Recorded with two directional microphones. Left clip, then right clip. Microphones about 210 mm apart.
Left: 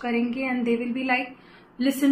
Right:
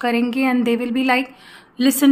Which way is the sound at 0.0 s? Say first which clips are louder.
Right 7 dB; 55° right (ahead or behind).